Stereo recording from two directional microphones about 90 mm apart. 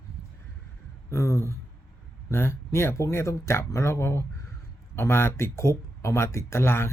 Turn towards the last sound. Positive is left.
turn(degrees=30)  # may be behind; listen again after turning